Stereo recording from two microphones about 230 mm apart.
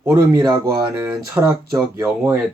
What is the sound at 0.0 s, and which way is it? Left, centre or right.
Speech, centre.